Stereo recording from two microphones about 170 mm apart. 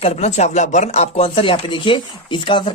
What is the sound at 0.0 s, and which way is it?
Speech, 40° left (ahead or behind).